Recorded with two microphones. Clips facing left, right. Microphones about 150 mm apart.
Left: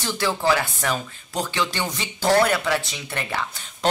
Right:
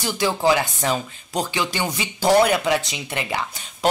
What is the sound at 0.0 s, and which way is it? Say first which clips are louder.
Speech: right 3 dB; 15° right (ahead or behind).